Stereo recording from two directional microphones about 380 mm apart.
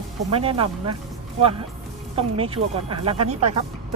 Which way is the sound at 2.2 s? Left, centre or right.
Centre.